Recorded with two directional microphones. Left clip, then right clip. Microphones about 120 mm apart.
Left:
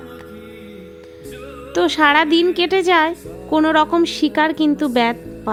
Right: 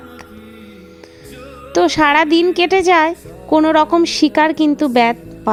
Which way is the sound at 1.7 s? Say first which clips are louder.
Right 2 dB; 40° right (ahead or behind).